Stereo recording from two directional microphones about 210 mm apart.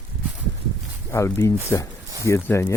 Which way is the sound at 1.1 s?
15° left (ahead or behind).